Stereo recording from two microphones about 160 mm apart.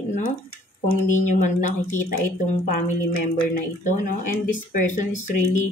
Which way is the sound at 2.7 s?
65° left (ahead or behind).